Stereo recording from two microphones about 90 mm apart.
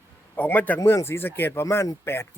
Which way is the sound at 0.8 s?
30° left (ahead or behind).